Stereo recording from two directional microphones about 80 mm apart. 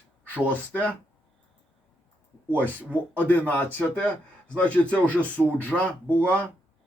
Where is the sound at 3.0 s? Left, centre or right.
Centre.